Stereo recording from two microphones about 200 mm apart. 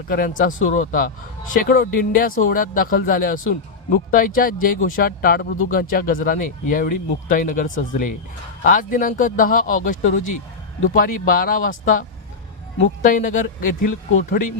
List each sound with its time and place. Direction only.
0.1 s speech: 45° left (ahead or behind)